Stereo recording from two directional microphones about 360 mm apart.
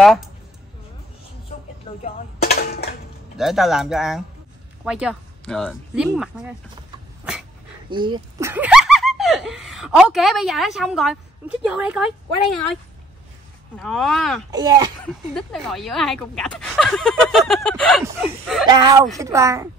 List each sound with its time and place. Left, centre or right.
0.0 s speech: centre
2.0 s speech: left
3.3 s speech: centre
7.9 s speech: centre
13.7 s speech: centre
14.5 s speech: centre
15.3 s speech: centre